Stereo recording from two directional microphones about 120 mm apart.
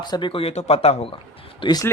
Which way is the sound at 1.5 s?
40° left (ahead or behind).